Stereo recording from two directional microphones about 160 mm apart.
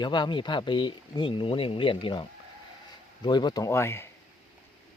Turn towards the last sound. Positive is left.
turn(degrees=15)  # may be behind; listen again after turning